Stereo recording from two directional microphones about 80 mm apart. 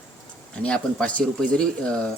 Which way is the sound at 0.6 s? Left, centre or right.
Centre.